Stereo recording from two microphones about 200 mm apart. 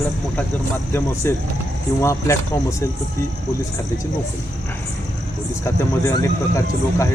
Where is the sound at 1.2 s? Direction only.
15° left (ahead or behind).